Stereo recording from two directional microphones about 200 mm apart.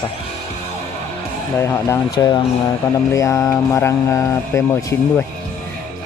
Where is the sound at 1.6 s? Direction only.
15° left (ahead or behind).